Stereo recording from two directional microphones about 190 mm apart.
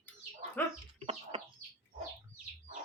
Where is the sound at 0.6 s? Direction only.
10° left (ahead or behind).